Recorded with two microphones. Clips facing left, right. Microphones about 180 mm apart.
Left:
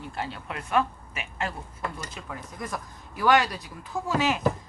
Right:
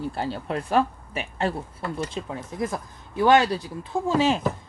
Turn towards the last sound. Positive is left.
turn(degrees=-30)  # may be behind; listen again after turning